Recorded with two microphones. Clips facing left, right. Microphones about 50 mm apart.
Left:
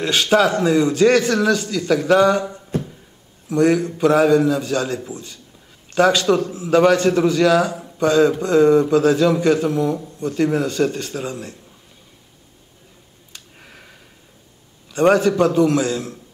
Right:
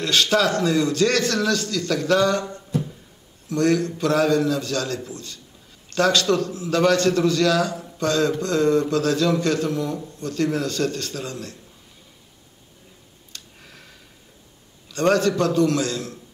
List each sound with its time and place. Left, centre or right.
0.0 s a man's voice: centre
13.3 s a sound: centre
14.9 s a man's voice: centre